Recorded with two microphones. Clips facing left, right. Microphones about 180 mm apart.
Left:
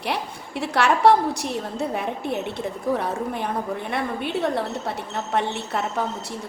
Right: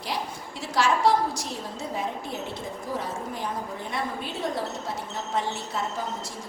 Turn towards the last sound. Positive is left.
turn(degrees=65)  # may be behind; listen again after turning